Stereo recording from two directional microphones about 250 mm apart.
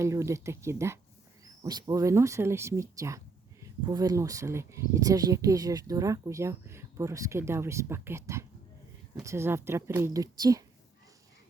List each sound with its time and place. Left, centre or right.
0.0 s speech: centre